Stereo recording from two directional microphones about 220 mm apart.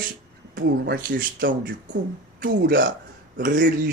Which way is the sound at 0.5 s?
45° right (ahead or behind).